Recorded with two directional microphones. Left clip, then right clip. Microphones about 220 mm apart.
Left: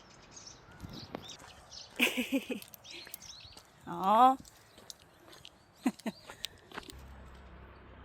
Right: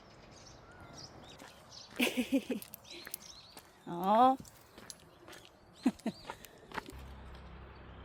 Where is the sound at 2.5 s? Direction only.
35° right (ahead or behind).